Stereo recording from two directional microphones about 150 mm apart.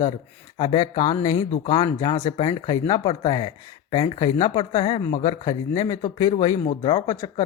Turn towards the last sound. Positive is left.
turn(degrees=35)  # may be behind; listen again after turning